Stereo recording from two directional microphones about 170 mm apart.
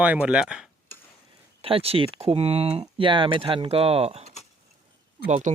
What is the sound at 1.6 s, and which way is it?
Speech, 35° right (ahead or behind).